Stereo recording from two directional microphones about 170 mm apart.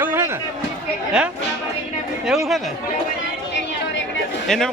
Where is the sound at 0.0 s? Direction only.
10° right (ahead or behind).